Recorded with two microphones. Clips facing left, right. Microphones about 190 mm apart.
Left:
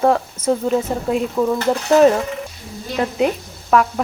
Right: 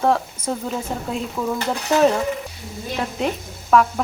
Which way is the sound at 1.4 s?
15° left (ahead or behind).